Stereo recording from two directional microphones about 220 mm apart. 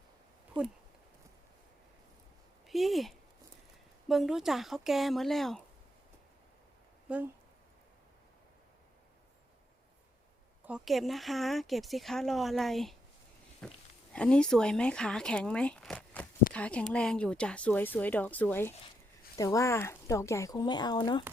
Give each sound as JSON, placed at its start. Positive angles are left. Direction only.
{"t": 2.6, "sound": "speech", "side_deg": 0}
{"t": 7.1, "sound": "speech", "side_deg": -5}
{"t": 10.7, "sound": "speech", "side_deg": 0}